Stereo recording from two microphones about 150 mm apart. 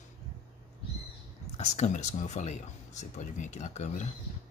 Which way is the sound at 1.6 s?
50° left (ahead or behind).